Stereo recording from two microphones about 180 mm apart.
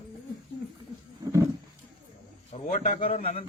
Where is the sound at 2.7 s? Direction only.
50° left (ahead or behind).